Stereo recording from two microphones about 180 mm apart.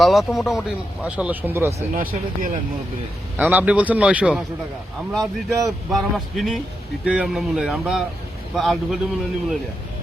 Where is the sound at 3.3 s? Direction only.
5° right (ahead or behind).